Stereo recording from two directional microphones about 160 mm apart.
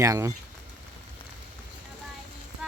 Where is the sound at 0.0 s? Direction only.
20° right (ahead or behind).